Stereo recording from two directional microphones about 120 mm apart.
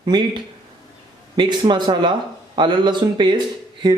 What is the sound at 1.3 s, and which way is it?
Speech, 40° right (ahead or behind).